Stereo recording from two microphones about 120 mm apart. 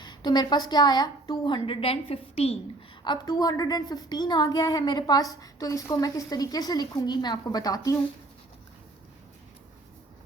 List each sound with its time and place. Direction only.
0.0 s a woman's voice: 35° left (ahead or behind); by 2.6 s 55° left (ahead or behind)
3.0 s a woman's voice: 40° left (ahead or behind)